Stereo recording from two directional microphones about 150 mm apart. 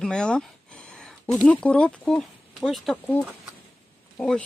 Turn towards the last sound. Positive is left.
turn(degrees=5)  # may be behind; listen again after turning